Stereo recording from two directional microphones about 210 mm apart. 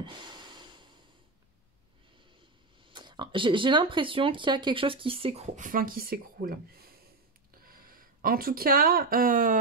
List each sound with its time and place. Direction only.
0.0 s snort: 20° right (ahead or behind)
2.8 s speech: 20° right (ahead or behind); by 9.6 s 40° right (ahead or behind)